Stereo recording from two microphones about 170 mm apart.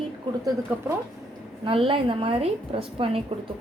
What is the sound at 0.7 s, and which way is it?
Speech, 15° right (ahead or behind).